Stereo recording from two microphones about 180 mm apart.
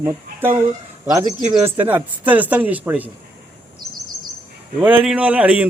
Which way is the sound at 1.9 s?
10° right (ahead or behind).